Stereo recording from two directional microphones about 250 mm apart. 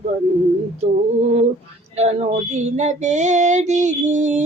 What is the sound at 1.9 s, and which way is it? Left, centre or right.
Child singing, right.